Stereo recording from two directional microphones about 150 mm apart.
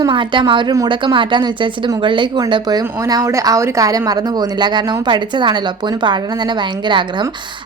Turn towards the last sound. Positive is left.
turn(degrees=-30)  # may be behind; listen again after turning